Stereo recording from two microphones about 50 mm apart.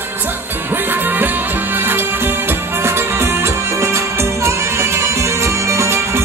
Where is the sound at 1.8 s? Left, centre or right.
Right.